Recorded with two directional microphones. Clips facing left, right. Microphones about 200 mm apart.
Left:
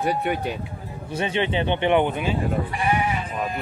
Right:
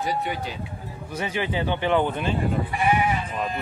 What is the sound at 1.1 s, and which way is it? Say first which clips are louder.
A man's voice: left 3 dB; 25° left (ahead or behind).